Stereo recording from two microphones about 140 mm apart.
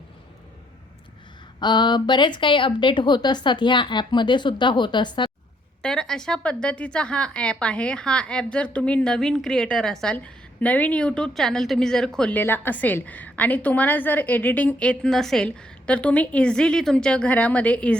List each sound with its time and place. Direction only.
1.5 s speech: 30° left (ahead or behind)
5.8 s a woman's voice: 5° left (ahead or behind)